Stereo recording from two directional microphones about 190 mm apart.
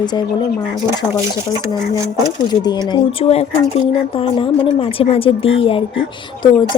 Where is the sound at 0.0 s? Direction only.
20° left (ahead or behind).